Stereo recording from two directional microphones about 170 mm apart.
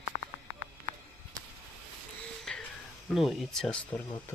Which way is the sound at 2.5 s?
5° left (ahead or behind).